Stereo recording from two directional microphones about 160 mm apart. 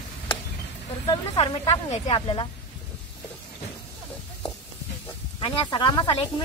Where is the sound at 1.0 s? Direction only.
30° left (ahead or behind).